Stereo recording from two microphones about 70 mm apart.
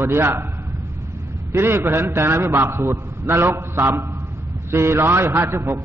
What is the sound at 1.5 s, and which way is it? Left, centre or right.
A man's voice, right.